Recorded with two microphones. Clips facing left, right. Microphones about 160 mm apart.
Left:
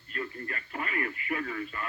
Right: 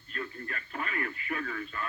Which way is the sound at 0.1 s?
20° left (ahead or behind).